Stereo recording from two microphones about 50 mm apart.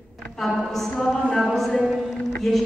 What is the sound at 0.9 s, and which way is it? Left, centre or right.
Speech, centre.